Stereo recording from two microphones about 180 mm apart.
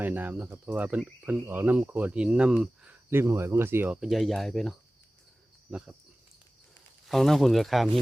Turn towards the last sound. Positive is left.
turn(degrees=0)  # may be behind; listen again after turning